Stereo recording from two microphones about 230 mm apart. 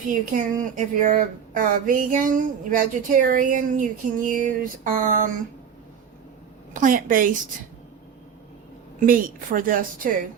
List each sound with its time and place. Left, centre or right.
0.1 s speech: right
6.7 s speech: right
9.0 s speech: right